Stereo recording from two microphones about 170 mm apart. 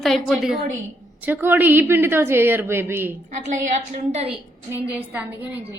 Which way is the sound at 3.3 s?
45° right (ahead or behind).